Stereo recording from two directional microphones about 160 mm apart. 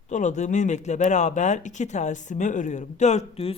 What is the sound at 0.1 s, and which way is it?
Speech, 50° left (ahead or behind).